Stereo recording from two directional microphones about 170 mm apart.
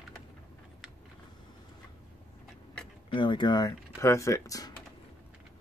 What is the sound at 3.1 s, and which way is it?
Speech, 30° left (ahead or behind).